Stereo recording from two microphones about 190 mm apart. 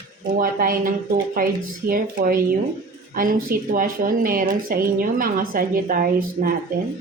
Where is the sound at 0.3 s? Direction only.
50° right (ahead or behind).